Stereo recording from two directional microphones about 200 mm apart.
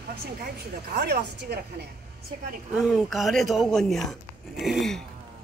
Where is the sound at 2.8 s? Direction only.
Centre (ahead or behind).